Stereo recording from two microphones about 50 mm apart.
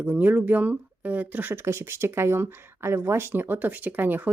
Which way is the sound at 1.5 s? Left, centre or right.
Right.